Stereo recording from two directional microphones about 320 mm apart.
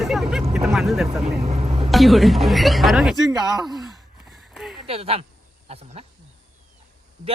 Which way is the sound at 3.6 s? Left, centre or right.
Centre.